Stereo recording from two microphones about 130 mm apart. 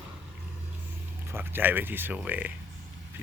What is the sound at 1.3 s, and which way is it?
Speech, 15° right (ahead or behind).